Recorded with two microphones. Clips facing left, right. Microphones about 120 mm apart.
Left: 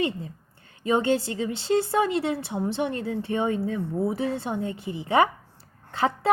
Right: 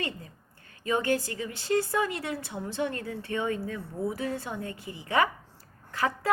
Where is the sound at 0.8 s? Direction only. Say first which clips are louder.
Left 4 dB; 20° left (ahead or behind).